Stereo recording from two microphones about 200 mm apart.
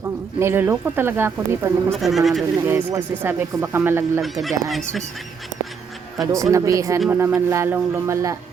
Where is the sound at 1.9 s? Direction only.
Centre (ahead or behind).